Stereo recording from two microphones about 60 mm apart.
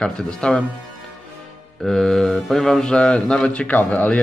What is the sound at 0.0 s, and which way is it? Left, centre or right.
Speech, centre.